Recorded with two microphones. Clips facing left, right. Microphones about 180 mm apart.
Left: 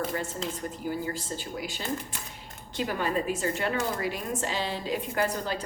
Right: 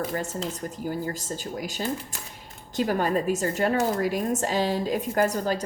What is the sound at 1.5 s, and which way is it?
Speech, 45° right (ahead or behind).